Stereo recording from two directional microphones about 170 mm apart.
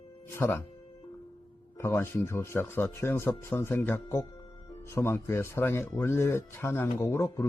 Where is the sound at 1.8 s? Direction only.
15° left (ahead or behind).